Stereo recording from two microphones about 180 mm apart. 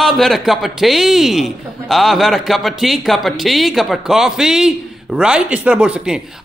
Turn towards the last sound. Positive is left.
turn(degrees=-5)  # may be behind; listen again after turning